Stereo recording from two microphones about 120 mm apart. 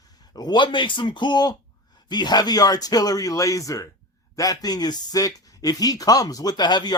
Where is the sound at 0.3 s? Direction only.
35° left (ahead or behind).